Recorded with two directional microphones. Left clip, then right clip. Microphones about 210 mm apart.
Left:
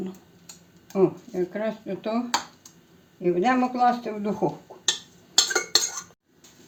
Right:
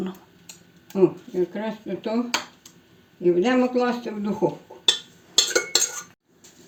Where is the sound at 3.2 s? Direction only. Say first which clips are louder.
Right 2 dB; 35° left (ahead or behind).